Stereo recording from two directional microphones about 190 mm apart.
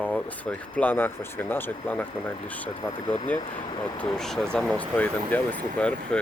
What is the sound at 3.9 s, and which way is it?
Speech, 5° left (ahead or behind).